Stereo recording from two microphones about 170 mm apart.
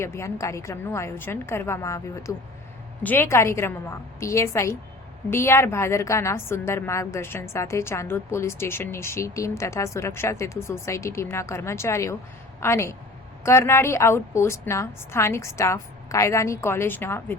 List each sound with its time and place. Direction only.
0.0 s a woman's voice: 15° left (ahead or behind)